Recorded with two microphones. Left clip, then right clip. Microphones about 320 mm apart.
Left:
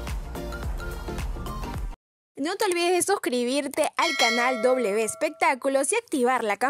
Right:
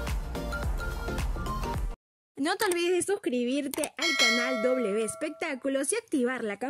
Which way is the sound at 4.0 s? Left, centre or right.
Centre.